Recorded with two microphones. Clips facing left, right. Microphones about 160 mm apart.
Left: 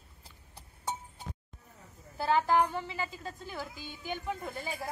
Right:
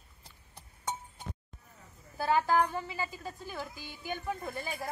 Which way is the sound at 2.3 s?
20° left (ahead or behind).